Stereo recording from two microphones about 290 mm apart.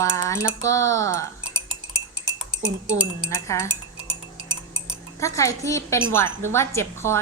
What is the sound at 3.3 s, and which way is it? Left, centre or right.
Speech, centre.